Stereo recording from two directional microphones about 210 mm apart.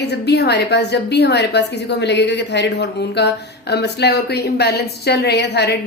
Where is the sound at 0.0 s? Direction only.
55° left (ahead or behind).